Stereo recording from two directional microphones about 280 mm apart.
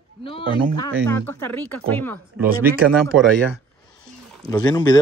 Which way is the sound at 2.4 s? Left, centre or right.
Right.